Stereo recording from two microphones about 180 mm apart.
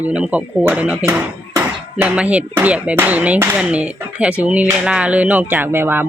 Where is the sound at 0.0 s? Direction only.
5° right (ahead or behind).